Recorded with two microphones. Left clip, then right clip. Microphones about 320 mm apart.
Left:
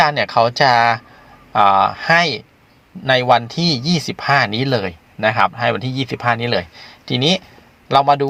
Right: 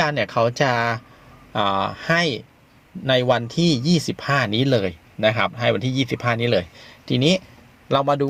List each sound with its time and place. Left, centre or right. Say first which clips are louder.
0.0 s speech: left 6 dB; centre